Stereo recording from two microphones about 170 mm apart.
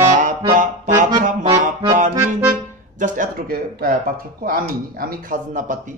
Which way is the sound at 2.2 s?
20° right (ahead or behind).